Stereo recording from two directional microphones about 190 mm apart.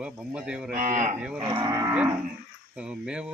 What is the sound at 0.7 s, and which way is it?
Speech, 45° right (ahead or behind).